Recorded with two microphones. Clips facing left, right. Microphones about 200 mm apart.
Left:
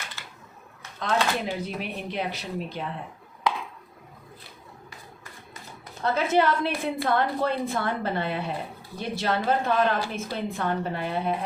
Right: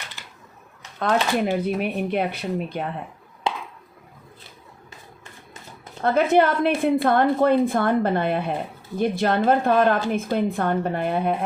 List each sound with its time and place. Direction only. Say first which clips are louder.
0.2 s typewriter: even; 15° right (ahead or behind)
0.9 s speech: right 5 dB; 60° right (ahead or behind)
3.5 s a sound: even; 25° right (ahead or behind)
6.0 s a woman's voice: right 5 dB; 55° right (ahead or behind)